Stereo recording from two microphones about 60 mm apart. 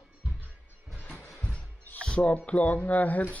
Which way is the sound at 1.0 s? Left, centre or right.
Left.